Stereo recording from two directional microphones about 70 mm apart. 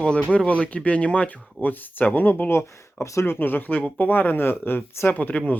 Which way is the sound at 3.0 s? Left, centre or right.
Left.